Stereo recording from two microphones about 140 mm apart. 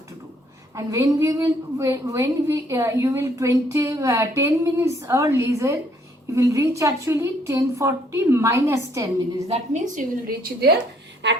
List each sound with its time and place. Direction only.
0.8 s a woman's voice: 25° right (ahead or behind)
9.5 s a woman's voice: 60° right (ahead or behind); by 10.7 s 80° right